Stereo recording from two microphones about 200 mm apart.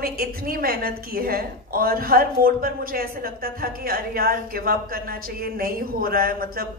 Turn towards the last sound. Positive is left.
turn(degrees=-50)  # may be behind; listen again after turning